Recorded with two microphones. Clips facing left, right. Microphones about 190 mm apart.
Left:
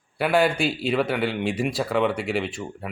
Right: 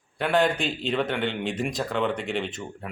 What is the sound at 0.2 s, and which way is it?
Speech, 5° left (ahead or behind).